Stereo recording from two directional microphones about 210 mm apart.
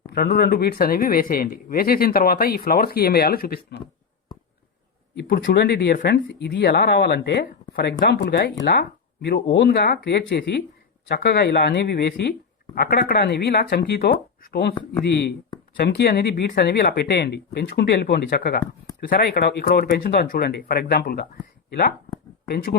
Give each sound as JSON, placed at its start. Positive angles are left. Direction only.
{"t": 0.1, "sound": "speech", "side_deg": 45}
{"t": 5.1, "sound": "speech", "side_deg": 50}
{"t": 15.8, "sound": "speech", "side_deg": 50}